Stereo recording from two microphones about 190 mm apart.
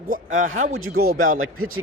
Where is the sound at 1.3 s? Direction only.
90° right.